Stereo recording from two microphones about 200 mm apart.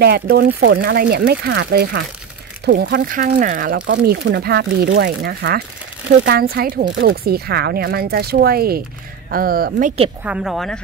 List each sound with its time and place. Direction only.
0.0 s speech: 55° right (ahead or behind)
10.2 s speech: 5° right (ahead or behind)